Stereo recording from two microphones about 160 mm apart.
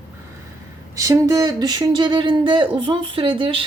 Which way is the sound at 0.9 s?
20° right (ahead or behind).